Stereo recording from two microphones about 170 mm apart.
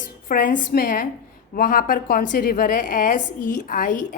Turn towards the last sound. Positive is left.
turn(degrees=50)  # may be behind; listen again after turning